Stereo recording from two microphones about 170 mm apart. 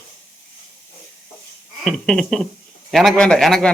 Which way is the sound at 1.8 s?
5° left (ahead or behind).